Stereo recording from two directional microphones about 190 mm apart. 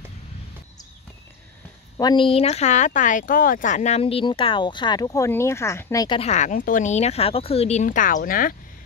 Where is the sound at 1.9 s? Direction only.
25° left (ahead or behind).